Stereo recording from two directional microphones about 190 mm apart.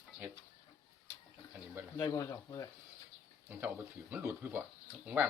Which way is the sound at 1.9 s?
15° left (ahead or behind).